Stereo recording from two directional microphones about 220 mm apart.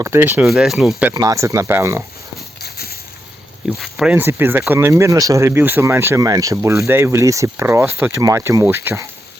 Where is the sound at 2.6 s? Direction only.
45° left (ahead or behind).